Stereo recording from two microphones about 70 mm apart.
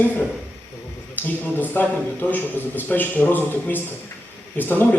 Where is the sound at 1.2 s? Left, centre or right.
Left.